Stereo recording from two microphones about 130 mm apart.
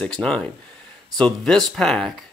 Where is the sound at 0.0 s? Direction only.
5° left (ahead or behind).